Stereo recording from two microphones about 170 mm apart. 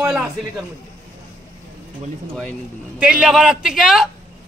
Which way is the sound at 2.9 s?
5° right (ahead or behind).